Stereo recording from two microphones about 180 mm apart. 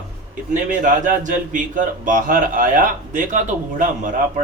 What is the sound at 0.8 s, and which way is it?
A man's voice, 45° right (ahead or behind).